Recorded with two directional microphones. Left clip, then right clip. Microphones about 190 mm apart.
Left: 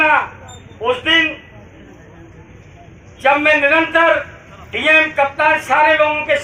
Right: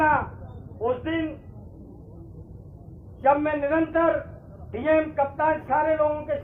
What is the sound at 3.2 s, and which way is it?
A man's voice, 20° left (ahead or behind).